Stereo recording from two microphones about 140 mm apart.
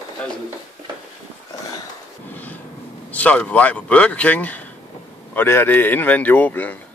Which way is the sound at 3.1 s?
10° left (ahead or behind).